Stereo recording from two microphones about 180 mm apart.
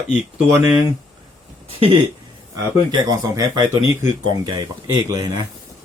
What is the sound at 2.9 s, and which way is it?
Speech, 20° right (ahead or behind).